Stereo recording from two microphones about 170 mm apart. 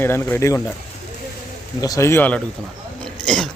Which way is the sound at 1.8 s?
20° left (ahead or behind).